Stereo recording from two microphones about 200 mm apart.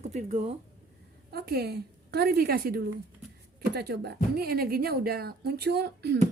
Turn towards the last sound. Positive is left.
turn(degrees=-55)  # may be behind; listen again after turning